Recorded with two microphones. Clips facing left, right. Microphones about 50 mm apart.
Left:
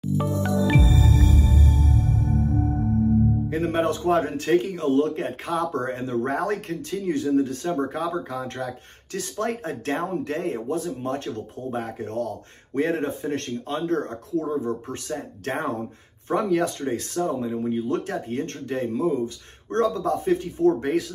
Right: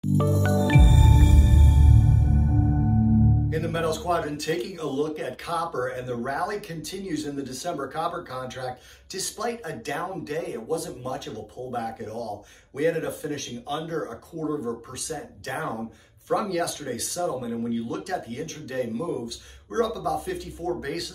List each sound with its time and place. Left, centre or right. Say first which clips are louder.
3.4 s speech: left 3 dB; left